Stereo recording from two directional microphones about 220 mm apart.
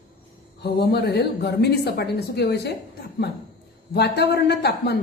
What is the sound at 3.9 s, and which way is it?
A woman's voice, 50° left (ahead or behind).